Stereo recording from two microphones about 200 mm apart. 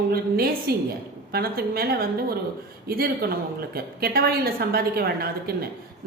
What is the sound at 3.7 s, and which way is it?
Speech, 50° right (ahead or behind).